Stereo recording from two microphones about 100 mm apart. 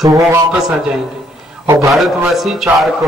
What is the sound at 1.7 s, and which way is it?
Speech, 35° right (ahead or behind).